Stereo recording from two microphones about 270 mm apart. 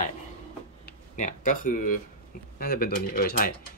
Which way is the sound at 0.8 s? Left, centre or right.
Left.